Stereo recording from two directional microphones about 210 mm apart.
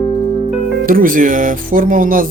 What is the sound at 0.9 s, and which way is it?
Speech, 40° right (ahead or behind).